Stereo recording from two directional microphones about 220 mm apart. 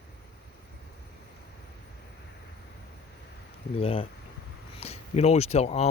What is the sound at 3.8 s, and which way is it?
Speech, 25° left (ahead or behind).